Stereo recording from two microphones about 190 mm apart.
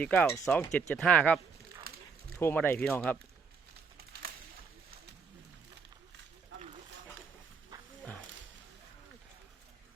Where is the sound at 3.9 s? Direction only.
55° right (ahead or behind).